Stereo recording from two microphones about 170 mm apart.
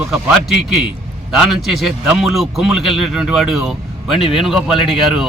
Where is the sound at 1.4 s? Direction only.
Centre (ahead or behind).